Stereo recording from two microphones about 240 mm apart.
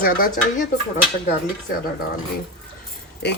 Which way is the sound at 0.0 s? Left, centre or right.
Left.